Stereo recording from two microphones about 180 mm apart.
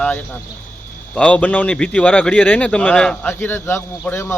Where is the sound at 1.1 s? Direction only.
5° left (ahead or behind).